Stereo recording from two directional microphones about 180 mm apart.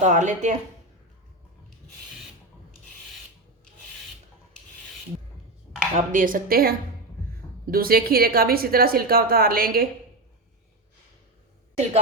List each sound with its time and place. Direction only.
0.0 s a woman's voice: 45° right (ahead or behind)
5.9 s a woman's voice: 45° right (ahead or behind)